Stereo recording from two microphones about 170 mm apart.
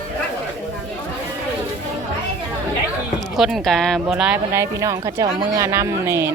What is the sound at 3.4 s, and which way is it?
Speech, centre (ahead or behind).